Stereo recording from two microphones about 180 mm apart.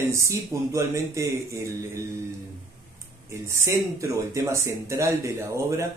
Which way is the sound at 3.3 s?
15° right (ahead or behind).